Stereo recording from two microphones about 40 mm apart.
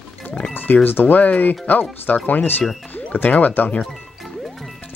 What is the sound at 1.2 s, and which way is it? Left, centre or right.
Speech, left.